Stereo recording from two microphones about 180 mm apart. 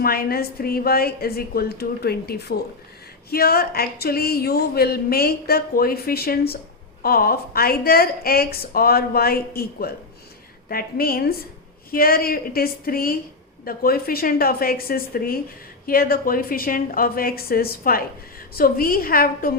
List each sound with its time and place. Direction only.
0.0 s a woman's voice: 55° left (ahead or behind)